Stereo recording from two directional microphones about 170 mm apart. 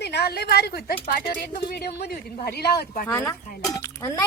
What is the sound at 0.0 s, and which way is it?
A woman's voice, 75° left (ahead or behind).